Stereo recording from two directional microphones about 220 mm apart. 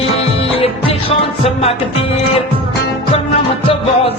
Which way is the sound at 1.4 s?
25° left (ahead or behind).